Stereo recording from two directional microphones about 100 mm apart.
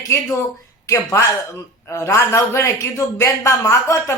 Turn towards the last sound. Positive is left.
turn(degrees=35)  # may be behind; listen again after turning